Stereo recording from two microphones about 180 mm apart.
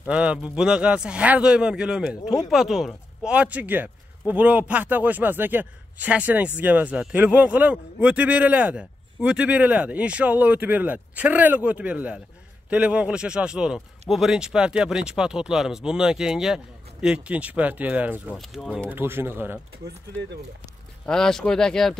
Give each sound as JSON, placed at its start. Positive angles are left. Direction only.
{"t": 0.1, "sound": "a man's voice", "side_deg": -5}
{"t": 18.3, "sound": "speech", "side_deg": 0}
{"t": 18.9, "sound": "a man's voice", "side_deg": -10}
{"t": 21.0, "sound": "speech", "side_deg": 5}